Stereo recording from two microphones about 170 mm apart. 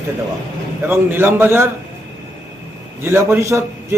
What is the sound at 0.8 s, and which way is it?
Speech, 10° right (ahead or behind).